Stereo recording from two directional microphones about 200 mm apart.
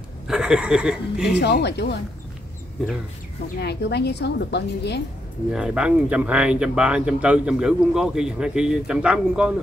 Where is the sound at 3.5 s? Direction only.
55° left (ahead or behind).